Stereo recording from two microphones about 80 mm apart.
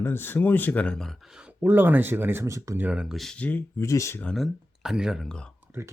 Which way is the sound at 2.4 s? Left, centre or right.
Right.